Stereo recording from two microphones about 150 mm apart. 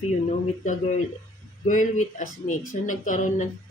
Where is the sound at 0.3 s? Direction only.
55° left (ahead or behind).